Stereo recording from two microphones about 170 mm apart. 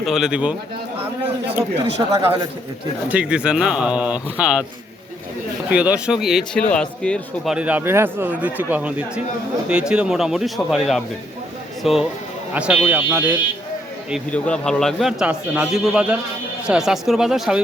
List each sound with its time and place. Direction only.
0.0 s a man's voice: centre (ahead or behind)
1.8 s speech: 20° right (ahead or behind)
3.1 s speech: 5° right (ahead or behind)
5.7 s a man's voice: 5° right (ahead or behind)
14.3 s a man's voice: 5° left (ahead or behind)